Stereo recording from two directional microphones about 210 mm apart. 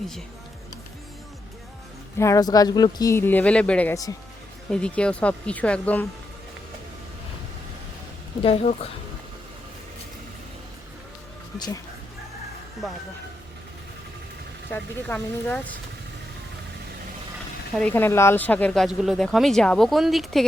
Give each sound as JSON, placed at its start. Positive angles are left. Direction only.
{"t": 2.1, "sound": "speech", "side_deg": 15}
{"t": 8.4, "sound": "a woman's voice", "side_deg": 25}
{"t": 14.7, "sound": "speech", "side_deg": 10}
{"t": 17.7, "sound": "speech", "side_deg": 10}